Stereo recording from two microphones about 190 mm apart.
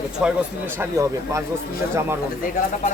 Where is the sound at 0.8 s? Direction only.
15° right (ahead or behind).